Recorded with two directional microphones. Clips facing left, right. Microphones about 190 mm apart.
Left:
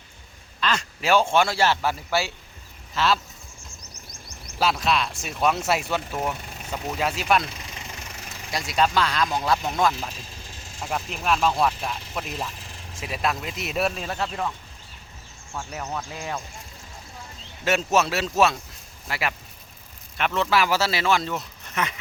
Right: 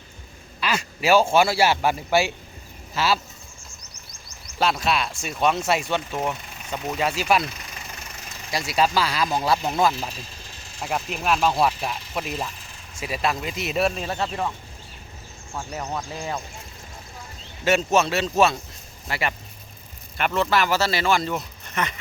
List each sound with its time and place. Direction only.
0.6 s speech: 10° right (ahead or behind)
4.6 s speech: centre (ahead or behind)
8.4 s speech: centre (ahead or behind)
15.8 s speech: 15° right (ahead or behind)
17.7 s speech: centre (ahead or behind)